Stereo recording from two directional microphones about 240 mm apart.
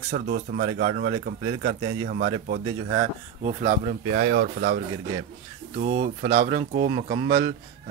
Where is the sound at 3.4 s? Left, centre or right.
Right.